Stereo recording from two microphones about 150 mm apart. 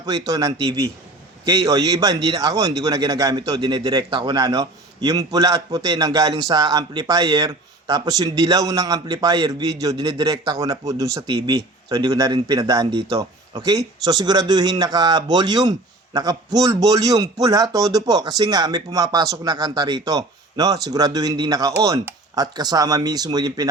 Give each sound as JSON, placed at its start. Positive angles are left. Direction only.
{"t": 0.0, "sound": "a man's voice", "side_deg": -25}